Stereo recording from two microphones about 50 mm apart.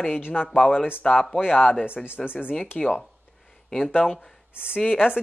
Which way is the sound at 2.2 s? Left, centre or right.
Left.